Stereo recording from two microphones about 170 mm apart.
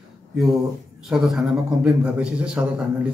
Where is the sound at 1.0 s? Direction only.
Centre (ahead or behind).